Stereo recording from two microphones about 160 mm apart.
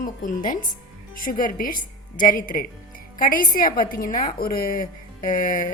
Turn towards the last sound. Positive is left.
turn(degrees=60)  # may be behind; listen again after turning